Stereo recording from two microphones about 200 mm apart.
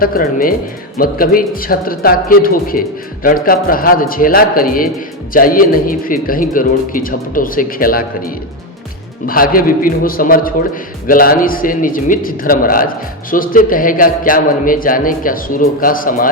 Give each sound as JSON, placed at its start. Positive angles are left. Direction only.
{"t": 0.0, "sound": "a man's voice", "side_deg": 45}